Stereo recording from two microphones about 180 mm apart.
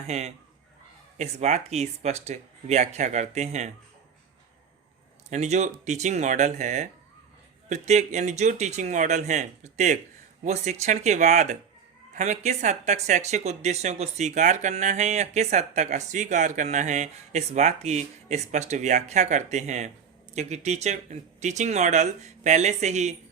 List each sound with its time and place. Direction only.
0.1 s speech: 35° right (ahead or behind)
5.3 s speech: 40° right (ahead or behind)